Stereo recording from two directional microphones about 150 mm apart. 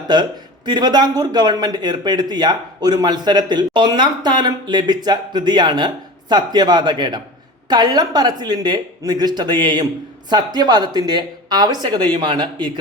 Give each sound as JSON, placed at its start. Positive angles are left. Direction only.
{"t": 0.1, "sound": "speech", "side_deg": -30}